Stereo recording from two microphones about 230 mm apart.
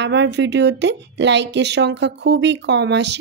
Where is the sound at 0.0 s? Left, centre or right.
Right.